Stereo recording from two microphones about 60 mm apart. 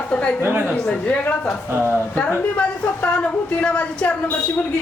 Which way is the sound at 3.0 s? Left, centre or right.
Left.